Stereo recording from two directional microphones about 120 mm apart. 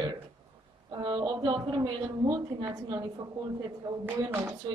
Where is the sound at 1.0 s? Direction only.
35° right (ahead or behind).